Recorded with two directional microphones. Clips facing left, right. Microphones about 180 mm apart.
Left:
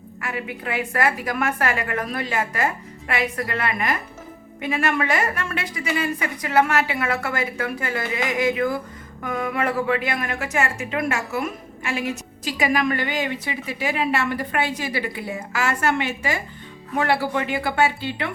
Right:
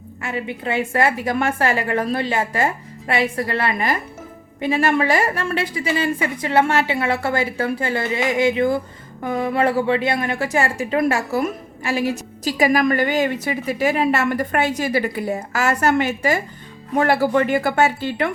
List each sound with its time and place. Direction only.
0.2 s a woman's voice: 25° right (ahead or behind); by 18.3 s 45° right (ahead or behind)